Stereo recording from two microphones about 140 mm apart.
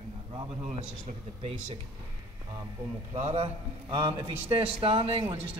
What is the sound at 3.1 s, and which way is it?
Speech, 50° right (ahead or behind).